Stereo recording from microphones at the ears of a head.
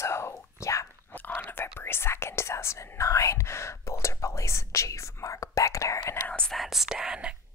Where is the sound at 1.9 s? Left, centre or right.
Left.